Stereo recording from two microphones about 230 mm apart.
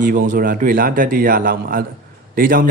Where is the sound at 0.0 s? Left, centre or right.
Right.